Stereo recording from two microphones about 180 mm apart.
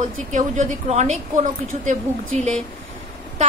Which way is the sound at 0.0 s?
45° right (ahead or behind).